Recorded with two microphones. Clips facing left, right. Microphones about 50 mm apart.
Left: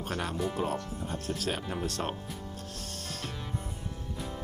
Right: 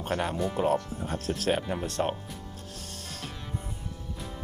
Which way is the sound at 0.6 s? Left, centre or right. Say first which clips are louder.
Right 8 dB; right.